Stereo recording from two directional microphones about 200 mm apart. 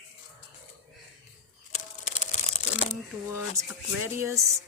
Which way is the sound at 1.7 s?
35° left (ahead or behind).